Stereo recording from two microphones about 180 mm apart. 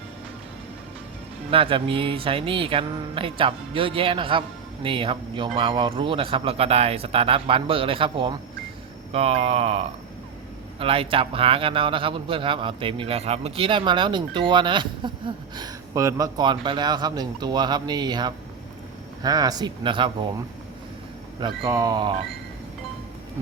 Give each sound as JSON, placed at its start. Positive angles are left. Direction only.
{"t": 1.5, "sound": "speech", "side_deg": -30}
{"t": 21.4, "sound": "speech", "side_deg": -20}